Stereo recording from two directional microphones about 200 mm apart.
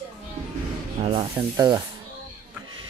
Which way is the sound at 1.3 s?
15° right (ahead or behind).